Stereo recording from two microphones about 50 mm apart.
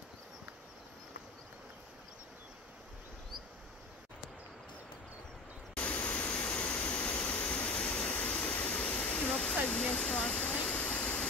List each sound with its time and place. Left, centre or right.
5.8 s a sound: left
9.8 s speech: centre
10.5 s vehicle: left